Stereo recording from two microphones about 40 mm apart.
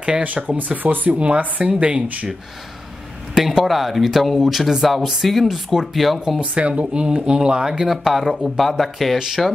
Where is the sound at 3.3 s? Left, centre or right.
Centre.